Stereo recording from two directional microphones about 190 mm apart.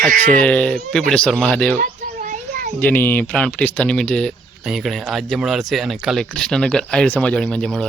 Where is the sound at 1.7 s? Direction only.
40° right (ahead or behind).